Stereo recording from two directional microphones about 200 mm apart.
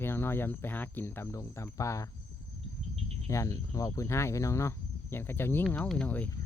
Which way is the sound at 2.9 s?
30° right (ahead or behind).